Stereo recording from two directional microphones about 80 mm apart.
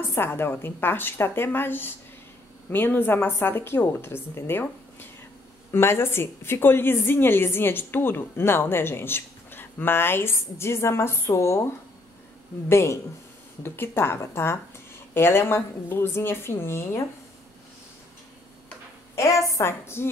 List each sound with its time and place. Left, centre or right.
0.1 s a woman's voice: left
12.6 s a woman's voice: left
19.1 s a woman's voice: left